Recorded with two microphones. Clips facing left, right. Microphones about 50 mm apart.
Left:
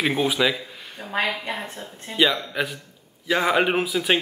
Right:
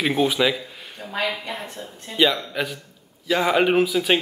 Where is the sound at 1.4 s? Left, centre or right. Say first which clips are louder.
Left 2 dB; left.